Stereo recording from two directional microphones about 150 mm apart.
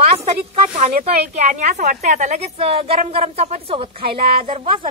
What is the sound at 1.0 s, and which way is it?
A woman's voice, 50° right (ahead or behind).